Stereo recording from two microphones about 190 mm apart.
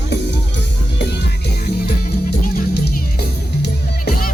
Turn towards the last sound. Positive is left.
turn(degrees=55)  # may be behind; listen again after turning